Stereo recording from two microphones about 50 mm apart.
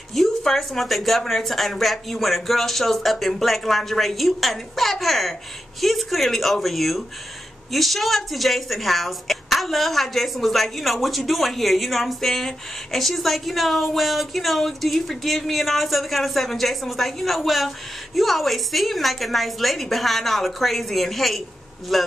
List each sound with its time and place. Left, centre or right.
0.1 s speech: centre